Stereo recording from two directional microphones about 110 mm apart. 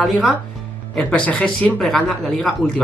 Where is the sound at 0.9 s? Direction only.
10° left (ahead or behind).